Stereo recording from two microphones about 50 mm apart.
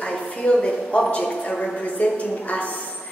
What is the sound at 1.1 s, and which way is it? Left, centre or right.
A woman's voice, left.